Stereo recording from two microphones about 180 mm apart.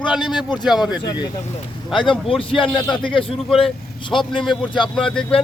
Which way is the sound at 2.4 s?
30° left (ahead or behind).